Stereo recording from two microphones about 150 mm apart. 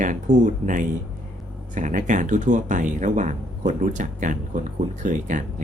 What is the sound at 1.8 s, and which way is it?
Speech, 55° right (ahead or behind).